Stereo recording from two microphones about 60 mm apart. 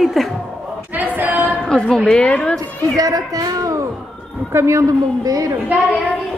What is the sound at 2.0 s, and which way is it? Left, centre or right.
Speech, centre.